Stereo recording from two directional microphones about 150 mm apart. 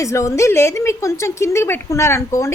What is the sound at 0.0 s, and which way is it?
A woman's voice, 20° left (ahead or behind).